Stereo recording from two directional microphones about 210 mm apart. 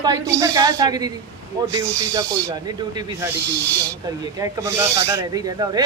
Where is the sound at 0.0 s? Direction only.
15° right (ahead or behind).